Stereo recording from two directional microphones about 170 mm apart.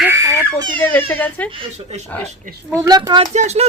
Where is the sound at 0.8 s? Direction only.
10° left (ahead or behind).